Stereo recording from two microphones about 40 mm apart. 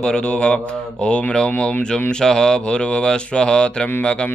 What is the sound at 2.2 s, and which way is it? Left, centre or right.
Speech, centre.